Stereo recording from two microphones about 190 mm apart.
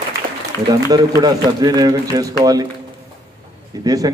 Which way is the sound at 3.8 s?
20° right (ahead or behind).